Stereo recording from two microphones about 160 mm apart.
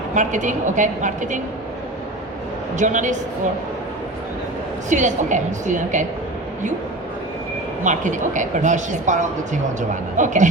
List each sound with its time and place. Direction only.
0.1 s speech: 50° right (ahead or behind)
2.7 s speech: 50° right (ahead or behind)
4.9 s speech: 50° right (ahead or behind)
7.9 s speech: 50° right (ahead or behind)